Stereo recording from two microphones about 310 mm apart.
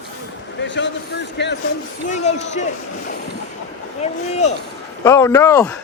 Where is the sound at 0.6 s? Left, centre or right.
Left.